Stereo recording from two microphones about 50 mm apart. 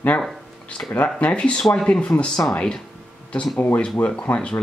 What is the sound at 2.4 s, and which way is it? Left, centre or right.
Speech, left.